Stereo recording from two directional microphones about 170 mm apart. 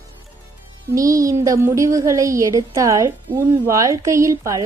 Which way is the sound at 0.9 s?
20° right (ahead or behind).